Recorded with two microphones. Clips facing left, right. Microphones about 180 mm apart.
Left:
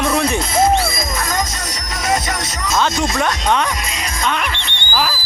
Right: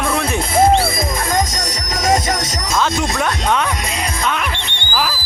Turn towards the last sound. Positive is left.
turn(degrees=-5)  # may be behind; listen again after turning